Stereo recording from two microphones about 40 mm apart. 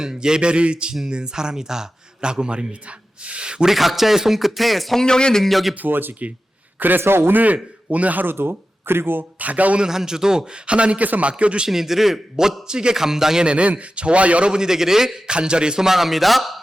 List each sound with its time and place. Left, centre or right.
0.0 s a man's voice: centre
3.7 s speech: centre
4.9 s a man's voice: centre
5.5 s speech: centre
5.7 s a man's voice: right
7.0 s a man's voice: right
7.3 s a man's voice: right
8.2 s speech: right
9.4 s a man's voice: right
9.7 s a man's voice: centre
11.7 s a man's voice: centre
13.4 s a man's voice: right
15.9 s speech: centre